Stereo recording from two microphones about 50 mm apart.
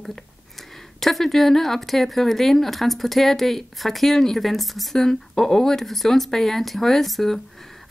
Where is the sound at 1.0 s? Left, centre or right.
Centre.